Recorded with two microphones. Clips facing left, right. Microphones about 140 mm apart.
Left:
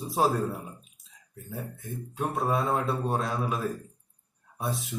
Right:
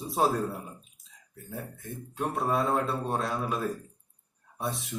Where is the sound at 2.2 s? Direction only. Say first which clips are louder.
Even; 5° left (ahead or behind).